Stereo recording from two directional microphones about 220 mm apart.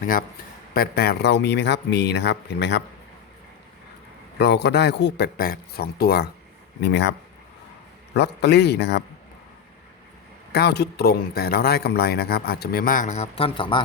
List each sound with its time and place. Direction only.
0.0 s a man's voice: 40° left (ahead or behind)
4.4 s a man's voice: 50° left (ahead or behind)
10.5 s a man's voice: 50° left (ahead or behind); by 13.8 s 20° left (ahead or behind)